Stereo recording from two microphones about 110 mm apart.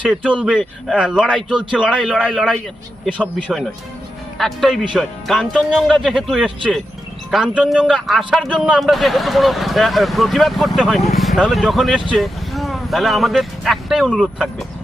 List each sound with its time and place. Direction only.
0.1 s speech: 10° right (ahead or behind)